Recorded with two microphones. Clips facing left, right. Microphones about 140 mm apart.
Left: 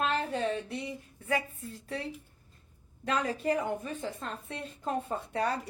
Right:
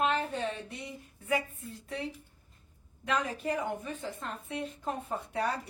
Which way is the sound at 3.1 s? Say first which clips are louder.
Left 2 dB; 35° left (ahead or behind).